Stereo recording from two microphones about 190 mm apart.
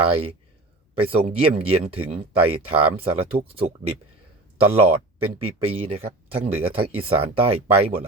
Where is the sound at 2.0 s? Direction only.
30° right (ahead or behind).